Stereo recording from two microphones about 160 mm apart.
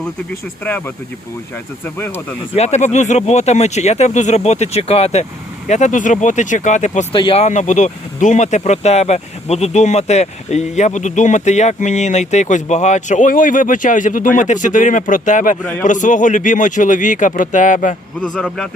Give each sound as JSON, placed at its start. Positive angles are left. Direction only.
{"t": 2.6, "sound": "speech", "side_deg": 45}
{"t": 7.1, "sound": "speech", "side_deg": 30}
{"t": 7.4, "sound": "speech", "side_deg": 45}
{"t": 18.2, "sound": "a man's voice", "side_deg": 5}